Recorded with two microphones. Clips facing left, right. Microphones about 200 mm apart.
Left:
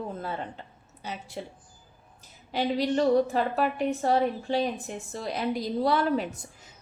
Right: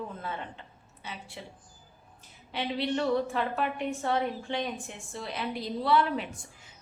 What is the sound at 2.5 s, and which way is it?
A woman's voice, 40° left (ahead or behind).